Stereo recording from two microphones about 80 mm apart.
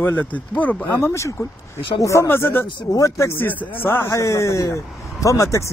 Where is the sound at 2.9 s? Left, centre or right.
Left.